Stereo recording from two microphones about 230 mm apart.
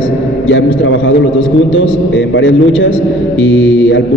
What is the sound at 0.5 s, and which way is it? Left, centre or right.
Speech, left.